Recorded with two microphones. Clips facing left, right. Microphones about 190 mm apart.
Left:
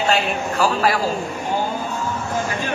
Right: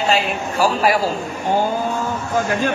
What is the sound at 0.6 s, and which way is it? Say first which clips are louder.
Speech: right 3 dB; 15° right (ahead or behind).